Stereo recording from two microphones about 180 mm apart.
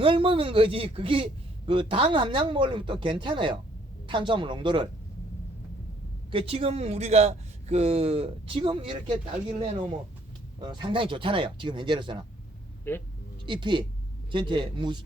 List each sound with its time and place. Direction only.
0.0 s a man's voice: 30° right (ahead or behind)
6.3 s speech: 30° right (ahead or behind)
10.6 s a man's voice: 25° right (ahead or behind)
12.9 s speech: 15° left (ahead or behind)
13.4 s a man's voice: 25° right (ahead or behind)